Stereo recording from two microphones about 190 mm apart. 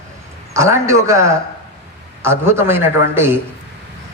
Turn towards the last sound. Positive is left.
turn(degrees=-10)  # may be behind; listen again after turning